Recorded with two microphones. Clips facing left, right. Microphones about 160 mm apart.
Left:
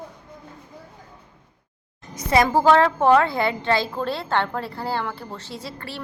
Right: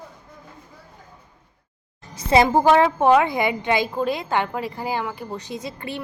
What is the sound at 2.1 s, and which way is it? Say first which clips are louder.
A woman's voice: right 2 dB; 25° right (ahead or behind).